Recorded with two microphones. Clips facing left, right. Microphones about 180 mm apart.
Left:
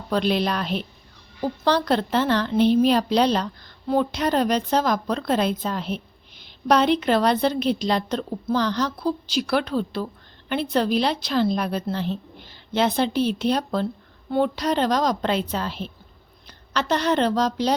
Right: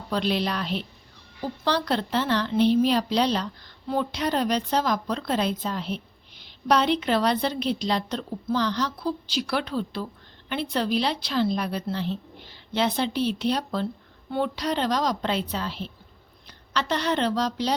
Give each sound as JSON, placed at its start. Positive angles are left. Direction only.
{"t": 0.1, "sound": "a woman's voice", "side_deg": 50}